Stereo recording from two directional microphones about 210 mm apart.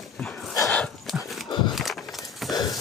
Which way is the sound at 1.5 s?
20° left (ahead or behind).